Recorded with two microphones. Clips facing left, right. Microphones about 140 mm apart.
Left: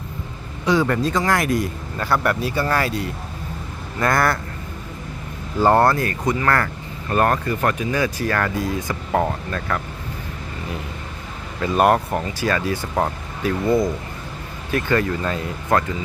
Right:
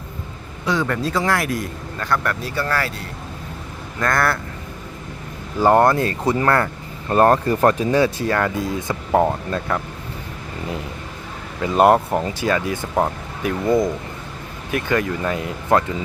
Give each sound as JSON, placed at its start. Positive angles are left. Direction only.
{"t": 0.6, "sound": "speech", "side_deg": 0}
{"t": 2.1, "sound": "speech", "side_deg": 15}
{"t": 4.0, "sound": "speech", "side_deg": 0}
{"t": 5.6, "sound": "speech", "side_deg": -15}
{"t": 7.1, "sound": "speech", "side_deg": -30}
{"t": 11.6, "sound": "speech", "side_deg": -20}